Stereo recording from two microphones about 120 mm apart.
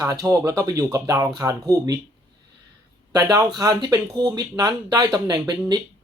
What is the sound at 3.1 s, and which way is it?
Speech, 35° right (ahead or behind).